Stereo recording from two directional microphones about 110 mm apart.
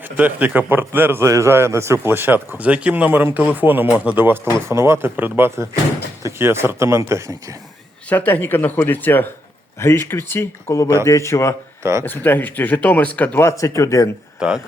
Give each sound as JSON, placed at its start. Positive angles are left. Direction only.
{"t": 0.0, "sound": "a man's voice", "side_deg": -15}
{"t": 8.1, "sound": "speech", "side_deg": 15}
{"t": 11.8, "sound": "speech", "side_deg": -25}
{"t": 12.0, "sound": "speech", "side_deg": 20}
{"t": 14.3, "sound": "speech", "side_deg": -10}